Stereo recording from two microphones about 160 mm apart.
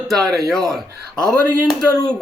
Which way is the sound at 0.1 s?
Centre (ahead or behind).